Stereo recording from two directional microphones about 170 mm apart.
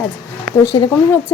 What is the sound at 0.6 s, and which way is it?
Speech, 25° left (ahead or behind).